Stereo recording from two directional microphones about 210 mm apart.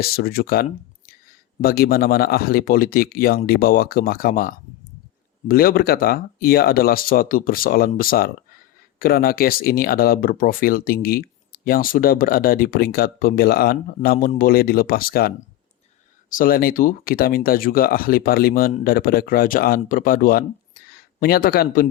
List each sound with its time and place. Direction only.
0.0 s speech: 45° left (ahead or behind)
16.3 s speech: 40° left (ahead or behind)